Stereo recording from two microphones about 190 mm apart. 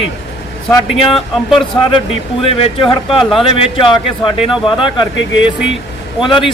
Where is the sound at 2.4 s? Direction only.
30° left (ahead or behind).